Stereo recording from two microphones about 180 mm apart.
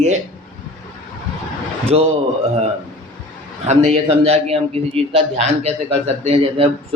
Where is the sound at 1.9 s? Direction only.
35° right (ahead or behind).